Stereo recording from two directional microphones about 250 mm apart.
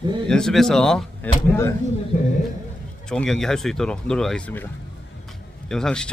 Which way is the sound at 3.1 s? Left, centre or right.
Centre.